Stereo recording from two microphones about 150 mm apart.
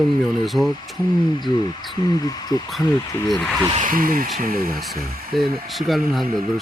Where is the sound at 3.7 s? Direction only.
65° right (ahead or behind).